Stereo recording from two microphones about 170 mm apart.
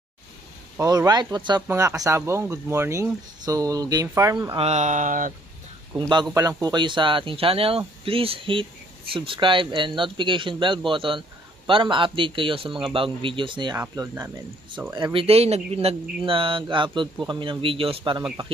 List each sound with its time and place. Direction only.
0.7 s speech: 20° right (ahead or behind)
4.6 s speech: 40° right (ahead or behind)
5.9 s speech: 25° right (ahead or behind)
15.1 s speech: 35° right (ahead or behind)